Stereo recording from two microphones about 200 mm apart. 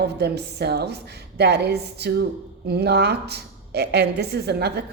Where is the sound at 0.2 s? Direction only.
55° right (ahead or behind).